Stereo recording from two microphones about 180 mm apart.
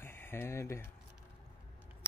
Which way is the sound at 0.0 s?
10° left (ahead or behind).